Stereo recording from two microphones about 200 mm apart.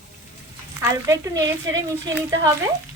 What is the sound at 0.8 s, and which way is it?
Speech, 15° right (ahead or behind).